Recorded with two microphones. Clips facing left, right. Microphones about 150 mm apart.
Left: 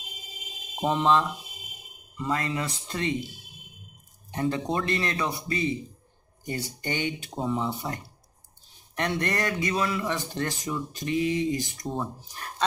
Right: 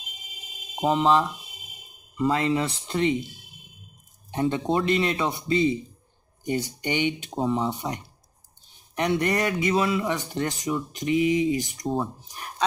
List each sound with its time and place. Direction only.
0.7 s speech: 15° right (ahead or behind)
2.1 s speech: 25° right (ahead or behind)
4.3 s speech: 25° right (ahead or behind)